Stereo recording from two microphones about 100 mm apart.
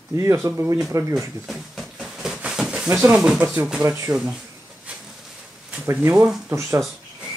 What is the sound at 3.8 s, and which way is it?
Speech, 30° right (ahead or behind).